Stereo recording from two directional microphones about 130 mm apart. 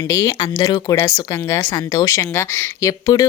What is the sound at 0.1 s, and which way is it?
Speech, 25° left (ahead or behind).